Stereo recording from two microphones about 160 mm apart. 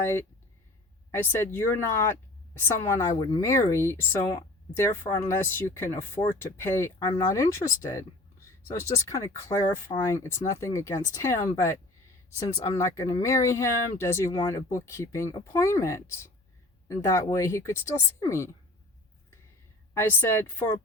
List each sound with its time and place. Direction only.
0.0 s speech: 15° left (ahead or behind)
19.9 s speech: 15° left (ahead or behind)